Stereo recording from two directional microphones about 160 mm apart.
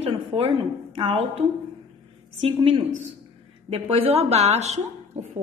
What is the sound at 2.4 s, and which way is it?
A woman's voice, 35° right (ahead or behind).